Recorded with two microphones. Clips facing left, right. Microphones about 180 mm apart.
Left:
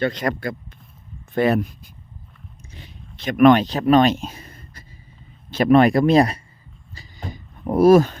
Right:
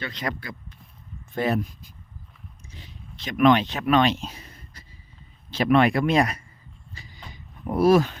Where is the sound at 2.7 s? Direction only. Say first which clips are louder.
Left 1 dB; 60° left (ahead or behind).